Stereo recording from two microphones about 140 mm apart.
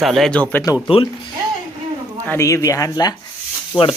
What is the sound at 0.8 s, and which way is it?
Speech, 35° left (ahead or behind).